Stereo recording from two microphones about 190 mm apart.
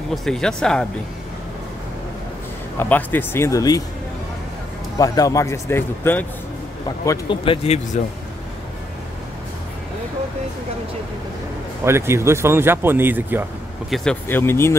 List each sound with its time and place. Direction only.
0.1 s speech: centre (ahead or behind)
2.8 s a man's voice: 10° left (ahead or behind)
4.9 s a man's voice: 20° left (ahead or behind)
7.1 s speech: 25° left (ahead or behind)
11.8 s speech: 15° right (ahead or behind)
13.9 s a man's voice: 5° left (ahead or behind)